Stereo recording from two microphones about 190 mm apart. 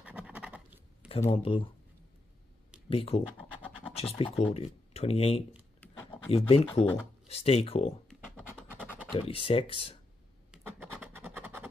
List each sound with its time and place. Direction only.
0.0 s scratch: 5° right (ahead or behind)
1.3 s speech: 30° left (ahead or behind)
2.9 s speech: 30° left (ahead or behind)
9.1 s speech: 30° left (ahead or behind)
10.5 s scratch: 10° right (ahead or behind)